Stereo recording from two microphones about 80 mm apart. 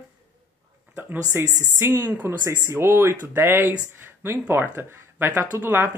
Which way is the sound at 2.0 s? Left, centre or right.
Right.